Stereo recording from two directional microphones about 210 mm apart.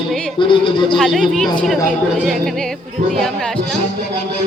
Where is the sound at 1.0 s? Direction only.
Centre (ahead or behind).